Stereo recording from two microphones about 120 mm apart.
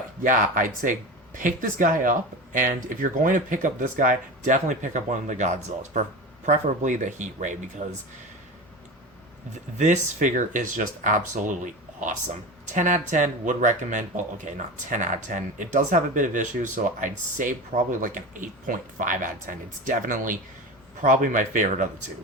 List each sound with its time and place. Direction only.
0.2 s speech: 90° right
9.7 s speech: 85° right